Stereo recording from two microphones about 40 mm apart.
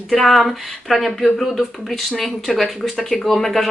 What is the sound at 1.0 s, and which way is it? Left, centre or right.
Speech, centre.